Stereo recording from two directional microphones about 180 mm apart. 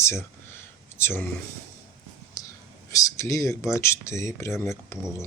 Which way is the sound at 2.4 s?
20° left (ahead or behind).